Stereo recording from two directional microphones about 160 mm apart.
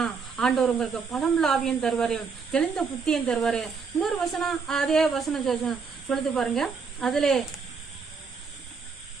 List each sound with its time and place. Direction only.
0.0 s speech: 5° left (ahead or behind)